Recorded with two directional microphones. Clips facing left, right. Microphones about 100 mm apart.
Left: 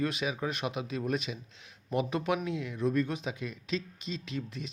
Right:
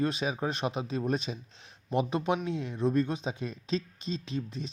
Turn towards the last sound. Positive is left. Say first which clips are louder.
# right 2 dB
turn(degrees=-30)  # may be behind; listen again after turning